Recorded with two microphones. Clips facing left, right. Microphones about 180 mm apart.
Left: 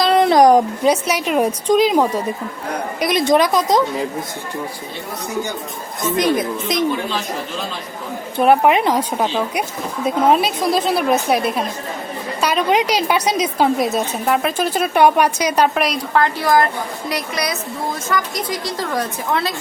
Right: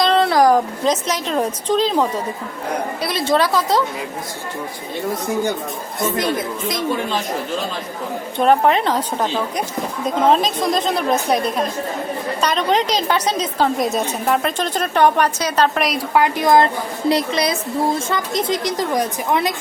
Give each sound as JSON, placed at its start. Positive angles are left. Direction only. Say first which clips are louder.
{"t": 0.2, "sound": "a woman's voice", "louder": "left 6 dB", "side_deg": 20}
{"t": 6.1, "sound": "speech", "louder": "left 3 dB", "side_deg": 20}
{"t": 8.4, "sound": "a woman's voice", "louder": "left 2 dB", "side_deg": 10}
{"t": 15.7, "sound": "a woman's voice", "louder": "left 1 dB", "side_deg": 0}
{"t": 16.1, "sound": "a woman's voice", "louder": "right 2 dB", "side_deg": -15}